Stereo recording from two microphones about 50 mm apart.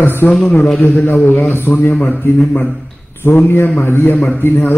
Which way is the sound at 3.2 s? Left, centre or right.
Left.